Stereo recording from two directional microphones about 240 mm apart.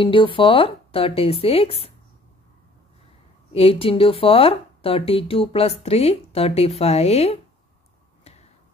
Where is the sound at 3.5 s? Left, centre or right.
Left.